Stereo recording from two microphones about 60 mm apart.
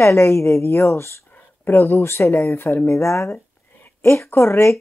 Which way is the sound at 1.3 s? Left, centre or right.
Left.